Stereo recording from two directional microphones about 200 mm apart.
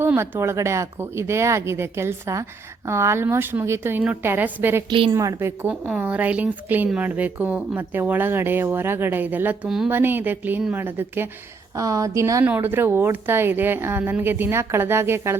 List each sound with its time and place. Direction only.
0.0 s a woman's voice: 10° right (ahead or behind)
4.9 s a woman's voice: 25° right (ahead or behind)
5.1 s a woman's voice: 15° right (ahead or behind)